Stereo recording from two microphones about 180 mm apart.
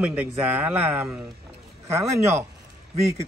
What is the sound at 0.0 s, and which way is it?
Speech, 10° right (ahead or behind).